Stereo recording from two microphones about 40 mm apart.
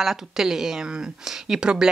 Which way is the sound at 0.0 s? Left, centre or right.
Centre.